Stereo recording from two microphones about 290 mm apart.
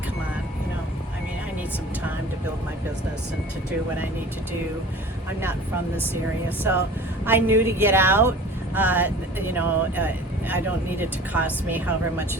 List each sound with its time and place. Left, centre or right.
7.3 s speech: centre